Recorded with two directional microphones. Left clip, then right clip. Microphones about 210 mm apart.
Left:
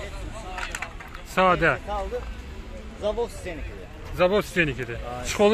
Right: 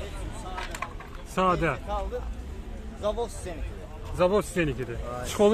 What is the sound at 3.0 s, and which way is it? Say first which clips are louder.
Speech: left 3 dB; 35° left (ahead or behind).